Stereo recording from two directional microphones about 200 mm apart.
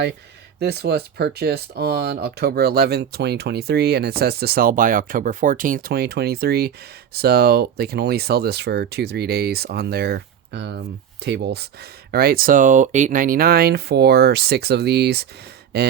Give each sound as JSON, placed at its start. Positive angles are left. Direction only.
{"t": 0.6, "sound": "speech", "side_deg": -55}